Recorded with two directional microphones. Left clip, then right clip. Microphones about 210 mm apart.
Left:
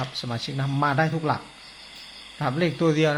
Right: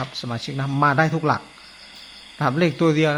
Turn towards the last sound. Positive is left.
turn(degrees=-15)  # may be behind; listen again after turning